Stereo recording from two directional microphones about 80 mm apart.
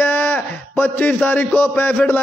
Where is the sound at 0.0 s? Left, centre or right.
Left.